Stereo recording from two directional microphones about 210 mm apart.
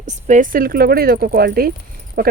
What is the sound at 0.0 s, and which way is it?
Speech, 35° right (ahead or behind).